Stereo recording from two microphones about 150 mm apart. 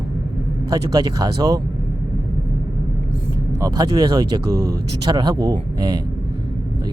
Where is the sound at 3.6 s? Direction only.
25° right (ahead or behind).